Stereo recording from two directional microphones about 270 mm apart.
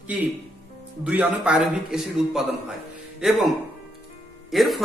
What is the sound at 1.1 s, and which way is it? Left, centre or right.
A man's voice, centre.